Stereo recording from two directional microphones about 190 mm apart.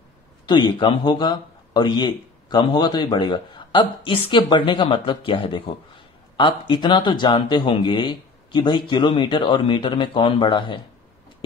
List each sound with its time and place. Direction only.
0.5 s speech: 25° left (ahead or behind)